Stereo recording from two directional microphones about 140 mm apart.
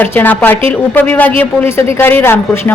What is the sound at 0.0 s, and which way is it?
A man's voice, 15° left (ahead or behind).